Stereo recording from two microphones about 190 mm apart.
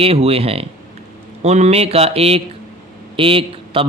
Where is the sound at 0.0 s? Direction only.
30° right (ahead or behind).